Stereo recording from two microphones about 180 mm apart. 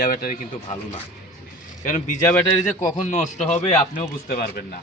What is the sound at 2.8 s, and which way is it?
Speech, 40° left (ahead or behind).